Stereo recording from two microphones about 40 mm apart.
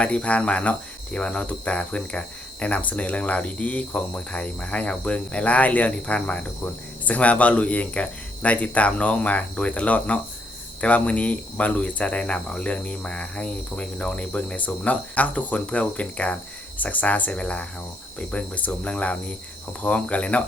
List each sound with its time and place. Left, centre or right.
0.0 s speech: left
17.3 s speech: left